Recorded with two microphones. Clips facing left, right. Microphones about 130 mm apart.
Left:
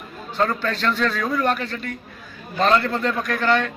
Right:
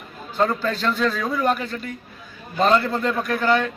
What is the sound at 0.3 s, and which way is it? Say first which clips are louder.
A man's voice: right 1 dB; 5° right (ahead or behind).